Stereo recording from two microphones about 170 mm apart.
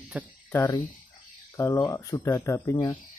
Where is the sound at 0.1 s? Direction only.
10° right (ahead or behind).